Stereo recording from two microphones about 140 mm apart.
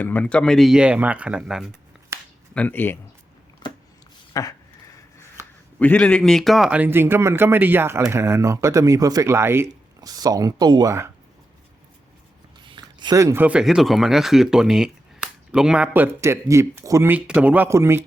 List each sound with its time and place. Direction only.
0.0 s speech: 10° left (ahead or behind)
2.1 s finger snapping: 20° right (ahead or behind)
2.6 s speech: 15° left (ahead or behind)
3.6 s a sound: 35° left (ahead or behind)
4.4 s a sound: 25° left (ahead or behind)
5.8 s a man's voice: 10° left (ahead or behind); by 11.1 s 20° right (ahead or behind)
12.6 s speech: 35° right (ahead or behind)